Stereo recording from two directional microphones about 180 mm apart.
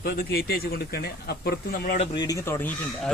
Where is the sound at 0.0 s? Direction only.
60° left (ahead or behind).